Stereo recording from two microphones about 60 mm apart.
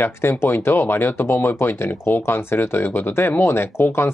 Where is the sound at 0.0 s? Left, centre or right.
Left.